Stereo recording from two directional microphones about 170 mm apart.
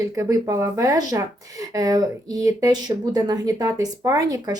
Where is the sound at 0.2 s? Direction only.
20° right (ahead or behind).